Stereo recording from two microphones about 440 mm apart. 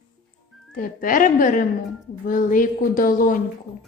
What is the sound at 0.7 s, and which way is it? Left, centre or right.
A woman's voice, centre.